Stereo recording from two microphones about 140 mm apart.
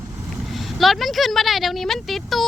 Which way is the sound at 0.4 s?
Centre (ahead or behind).